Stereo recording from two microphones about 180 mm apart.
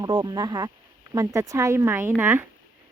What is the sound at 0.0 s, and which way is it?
Speech, 20° right (ahead or behind).